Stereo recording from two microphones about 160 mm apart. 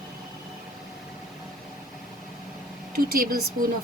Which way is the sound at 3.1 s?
65° right (ahead or behind).